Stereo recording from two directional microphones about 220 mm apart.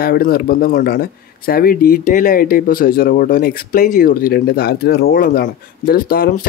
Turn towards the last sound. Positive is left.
turn(degrees=40)  # may be behind; listen again after turning